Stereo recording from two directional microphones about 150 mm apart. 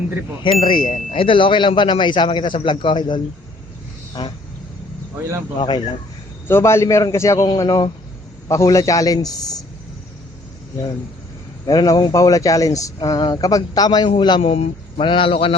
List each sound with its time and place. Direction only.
0.6 s a man's voice: 35° left (ahead or behind)
4.2 s speech: 25° left (ahead or behind)
5.5 s a man's voice: 30° left (ahead or behind)
6.5 s speech: 15° left (ahead or behind)
11.6 s a man's voice: 25° left (ahead or behind)